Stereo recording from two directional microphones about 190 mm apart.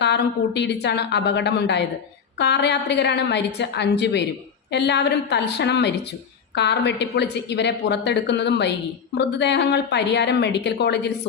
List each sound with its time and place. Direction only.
0.0 s a woman's voice: 65° left (ahead or behind)